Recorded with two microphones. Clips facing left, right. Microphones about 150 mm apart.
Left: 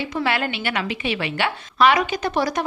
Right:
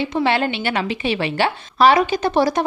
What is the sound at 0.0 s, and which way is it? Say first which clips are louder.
A woman's voice: right 4 dB; 25° right (ahead or behind).